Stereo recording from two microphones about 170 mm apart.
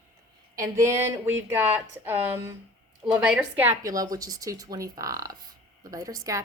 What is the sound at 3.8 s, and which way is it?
Speech, 20° right (ahead or behind).